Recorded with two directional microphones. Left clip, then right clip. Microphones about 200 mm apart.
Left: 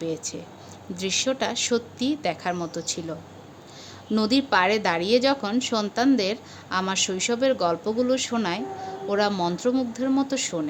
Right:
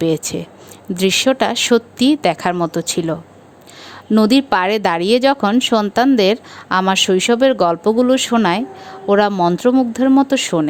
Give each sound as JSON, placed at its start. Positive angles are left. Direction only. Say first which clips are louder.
{"t": 0.0, "sound": "speech", "louder": "right 12 dB", "side_deg": -55}